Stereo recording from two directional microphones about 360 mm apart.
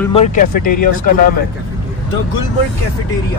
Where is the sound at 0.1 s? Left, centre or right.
Centre.